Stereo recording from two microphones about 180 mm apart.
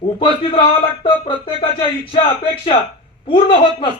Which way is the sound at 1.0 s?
30° left (ahead or behind).